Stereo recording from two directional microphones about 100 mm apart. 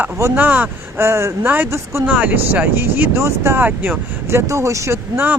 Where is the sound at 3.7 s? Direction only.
15° right (ahead or behind).